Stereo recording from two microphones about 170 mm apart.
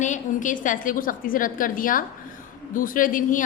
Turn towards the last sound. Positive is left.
turn(degrees=50)  # may be behind; listen again after turning